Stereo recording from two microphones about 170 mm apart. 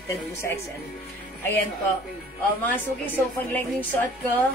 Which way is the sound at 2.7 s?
10° left (ahead or behind).